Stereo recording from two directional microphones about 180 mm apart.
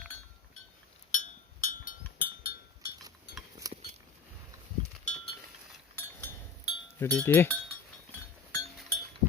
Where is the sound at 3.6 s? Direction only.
20° right (ahead or behind).